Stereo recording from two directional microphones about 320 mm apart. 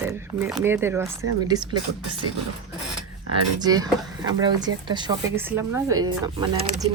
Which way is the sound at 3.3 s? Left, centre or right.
Centre.